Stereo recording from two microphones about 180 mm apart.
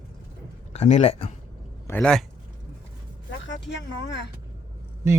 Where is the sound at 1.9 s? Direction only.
5° left (ahead or behind).